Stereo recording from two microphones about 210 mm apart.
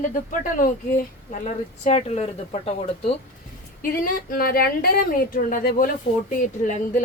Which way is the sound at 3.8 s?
40° left (ahead or behind).